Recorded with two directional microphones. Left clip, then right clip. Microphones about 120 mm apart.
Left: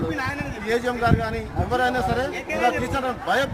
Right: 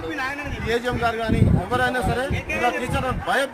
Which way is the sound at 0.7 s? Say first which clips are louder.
Left 1 dB; 15° left (ahead or behind).